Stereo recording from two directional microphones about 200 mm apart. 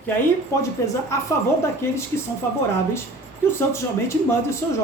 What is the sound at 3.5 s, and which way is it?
Speech, 15° left (ahead or behind).